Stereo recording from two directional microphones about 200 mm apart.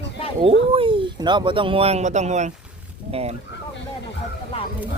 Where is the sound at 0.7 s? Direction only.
25° right (ahead or behind).